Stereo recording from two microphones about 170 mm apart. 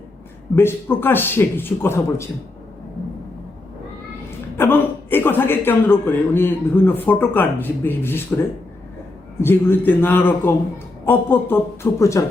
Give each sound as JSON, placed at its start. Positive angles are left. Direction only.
{"t": 0.5, "sound": "a man's voice", "side_deg": 15}
{"t": 4.5, "sound": "a man's voice", "side_deg": 15}
{"t": 9.4, "sound": "a man's voice", "side_deg": 15}